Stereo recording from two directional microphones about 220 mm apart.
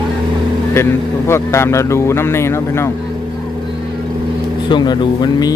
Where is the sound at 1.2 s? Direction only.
10° left (ahead or behind).